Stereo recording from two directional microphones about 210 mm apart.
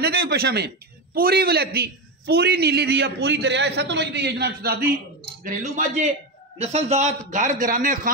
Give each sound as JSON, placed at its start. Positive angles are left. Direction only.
{"t": 0.0, "sound": "a man's voice", "side_deg": -50}
{"t": 5.4, "sound": "a man's voice", "side_deg": -35}